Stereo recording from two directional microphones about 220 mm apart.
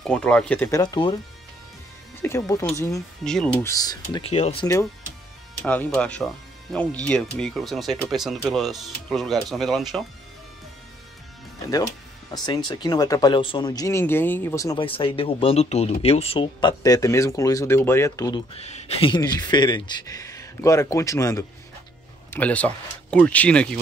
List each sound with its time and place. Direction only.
0.0 s speech: 5° left (ahead or behind)
2.2 s speech: 15° left (ahead or behind)
3.3 s speech: 5° left (ahead or behind)
3.7 s speech: 15° left (ahead or behind)
5.7 s speech: 5° left (ahead or behind)
12.3 s speech: 20° left (ahead or behind)